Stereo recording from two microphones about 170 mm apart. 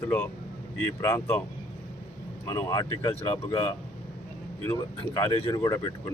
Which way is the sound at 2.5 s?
20° left (ahead or behind).